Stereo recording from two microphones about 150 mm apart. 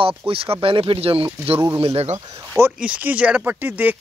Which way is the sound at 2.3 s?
15° right (ahead or behind).